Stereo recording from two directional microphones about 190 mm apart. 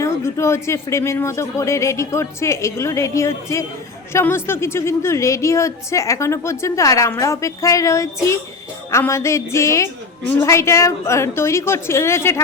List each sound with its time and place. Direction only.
0.0 s a woman's voice: 15° left (ahead or behind)